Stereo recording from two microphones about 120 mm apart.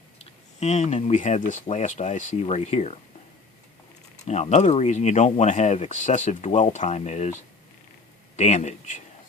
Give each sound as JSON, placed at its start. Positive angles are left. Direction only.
{"t": 0.2, "sound": "speech", "side_deg": 70}
{"t": 4.2, "sound": "speech", "side_deg": 70}
{"t": 8.4, "sound": "speech", "side_deg": 70}